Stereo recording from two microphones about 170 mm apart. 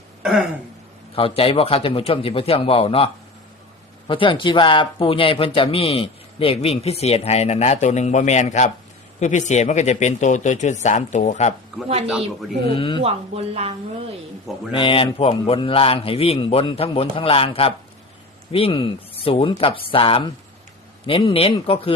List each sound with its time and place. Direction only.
0.2 s a sound: 5° right (ahead or behind)
1.1 s speech: 35° left (ahead or behind)
12.7 s speech: 30° left (ahead or behind)
13.0 s speech: 35° right (ahead or behind)
14.7 s speech: 30° left (ahead or behind)